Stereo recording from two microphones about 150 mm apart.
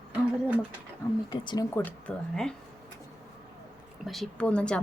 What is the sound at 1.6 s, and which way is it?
Speech, 15° left (ahead or behind).